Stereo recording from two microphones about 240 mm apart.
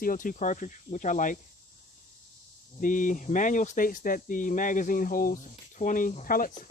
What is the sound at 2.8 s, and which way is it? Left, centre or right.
Speech, left.